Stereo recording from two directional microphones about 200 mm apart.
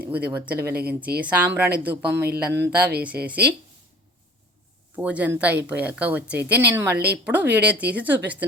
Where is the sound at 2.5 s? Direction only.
55° right (ahead or behind).